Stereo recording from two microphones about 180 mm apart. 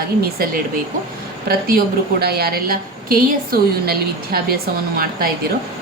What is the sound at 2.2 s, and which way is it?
A woman's voice, 60° right (ahead or behind).